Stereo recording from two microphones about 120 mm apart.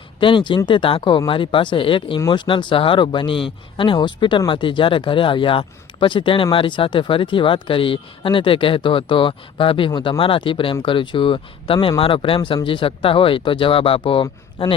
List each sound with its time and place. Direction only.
0.2 s speech: 45° left (ahead or behind)